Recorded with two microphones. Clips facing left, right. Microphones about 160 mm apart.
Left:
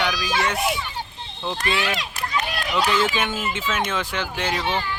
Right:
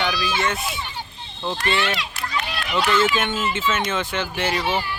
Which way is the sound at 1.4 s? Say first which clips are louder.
Right 1 dB; centre (ahead or behind).